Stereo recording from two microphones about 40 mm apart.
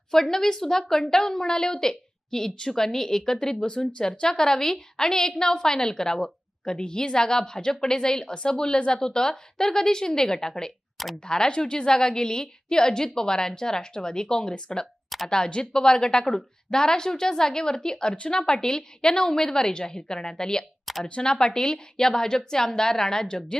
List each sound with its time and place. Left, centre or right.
0.1 s a woman's voice: centre